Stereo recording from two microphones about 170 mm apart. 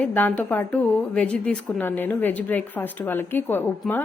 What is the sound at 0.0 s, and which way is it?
A woman's voice, 10° left (ahead or behind).